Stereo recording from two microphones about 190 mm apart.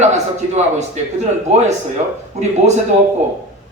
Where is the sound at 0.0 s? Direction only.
35° right (ahead or behind).